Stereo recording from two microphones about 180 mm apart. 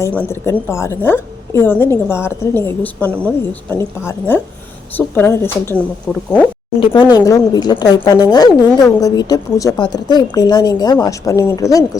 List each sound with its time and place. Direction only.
0.0 s a woman's voice: 10° left (ahead or behind)
6.1 s speech: 5° left (ahead or behind)
6.7 s a woman's voice: 25° left (ahead or behind)